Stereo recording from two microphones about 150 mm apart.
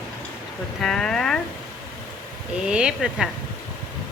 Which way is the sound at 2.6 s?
5° right (ahead or behind).